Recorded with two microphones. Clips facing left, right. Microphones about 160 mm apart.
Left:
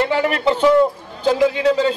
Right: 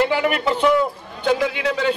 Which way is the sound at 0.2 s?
35° left (ahead or behind).